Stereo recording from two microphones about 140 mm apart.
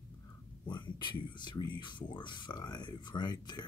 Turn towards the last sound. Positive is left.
turn(degrees=30)  # may be behind; listen again after turning